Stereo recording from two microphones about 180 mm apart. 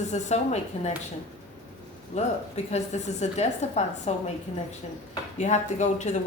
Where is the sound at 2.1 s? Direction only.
40° left (ahead or behind).